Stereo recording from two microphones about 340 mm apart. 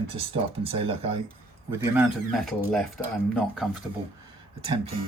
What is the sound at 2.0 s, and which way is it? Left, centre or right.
Speech, centre.